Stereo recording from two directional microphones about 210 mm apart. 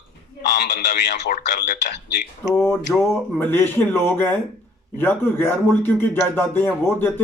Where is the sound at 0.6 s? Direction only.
50° left (ahead or behind).